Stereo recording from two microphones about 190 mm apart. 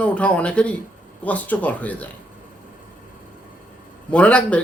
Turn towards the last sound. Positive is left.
turn(degrees=5)  # may be behind; listen again after turning